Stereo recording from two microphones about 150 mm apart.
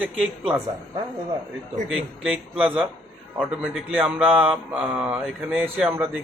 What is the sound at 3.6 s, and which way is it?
Speech, 5° right (ahead or behind).